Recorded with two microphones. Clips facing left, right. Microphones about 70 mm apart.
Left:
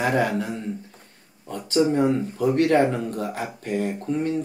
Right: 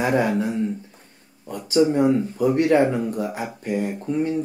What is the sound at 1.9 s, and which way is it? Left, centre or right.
Speech, centre.